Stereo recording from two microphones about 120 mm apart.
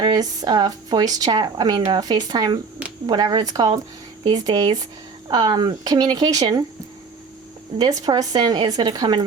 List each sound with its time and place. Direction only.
0.0 s speech: 35° right (ahead or behind)
7.8 s speech: 35° right (ahead or behind)